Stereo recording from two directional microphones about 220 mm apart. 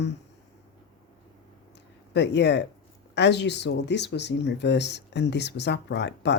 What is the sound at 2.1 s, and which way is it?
A woman's voice, 50° left (ahead or behind).